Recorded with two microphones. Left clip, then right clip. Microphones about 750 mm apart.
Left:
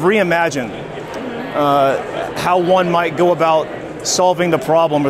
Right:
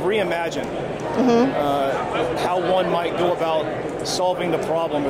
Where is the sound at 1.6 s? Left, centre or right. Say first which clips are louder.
Left 7 dB; left.